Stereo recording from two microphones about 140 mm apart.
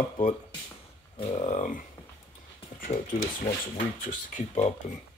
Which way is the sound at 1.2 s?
35° left (ahead or behind).